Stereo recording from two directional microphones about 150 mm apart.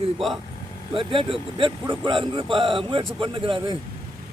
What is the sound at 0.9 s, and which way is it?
Speech, 35° right (ahead or behind).